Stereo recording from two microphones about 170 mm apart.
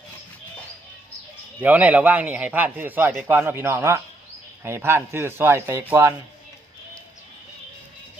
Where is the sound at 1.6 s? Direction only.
10° right (ahead or behind).